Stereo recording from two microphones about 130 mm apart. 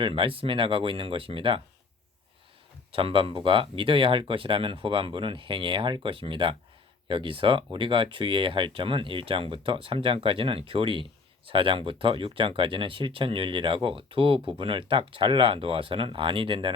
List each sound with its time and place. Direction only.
0.0 s speech: 40° right (ahead or behind)
2.9 s speech: 40° right (ahead or behind)